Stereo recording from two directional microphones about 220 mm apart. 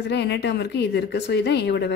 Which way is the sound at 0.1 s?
50° left (ahead or behind).